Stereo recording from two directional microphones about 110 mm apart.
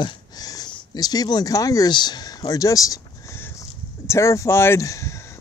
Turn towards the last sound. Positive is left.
turn(degrees=25)  # may be behind; listen again after turning